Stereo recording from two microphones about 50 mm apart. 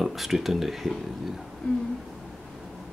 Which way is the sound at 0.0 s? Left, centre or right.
Centre.